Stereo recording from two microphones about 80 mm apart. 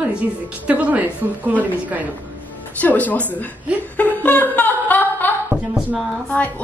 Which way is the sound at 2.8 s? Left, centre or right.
Centre.